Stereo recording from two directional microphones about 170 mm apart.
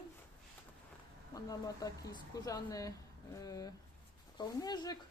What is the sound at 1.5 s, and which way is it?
Speech, 20° left (ahead or behind).